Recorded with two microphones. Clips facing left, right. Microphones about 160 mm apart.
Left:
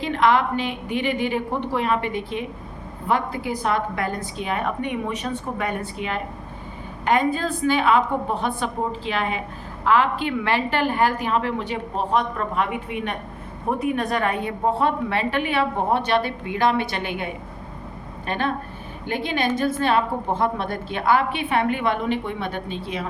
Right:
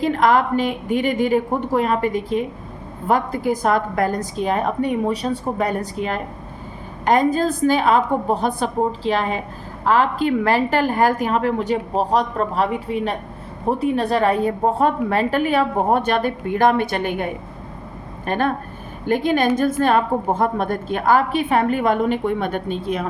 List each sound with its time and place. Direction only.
0.0 s a woman's voice: 45° right (ahead or behind)
18.3 s a woman's voice: 45° right (ahead or behind)